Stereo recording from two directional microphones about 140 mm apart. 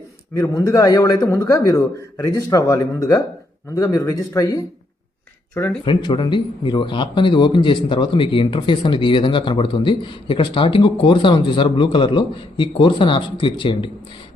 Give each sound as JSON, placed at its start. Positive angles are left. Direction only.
{"t": 0.3, "sound": "speech", "side_deg": 20}
{"t": 5.8, "sound": "speech", "side_deg": 35}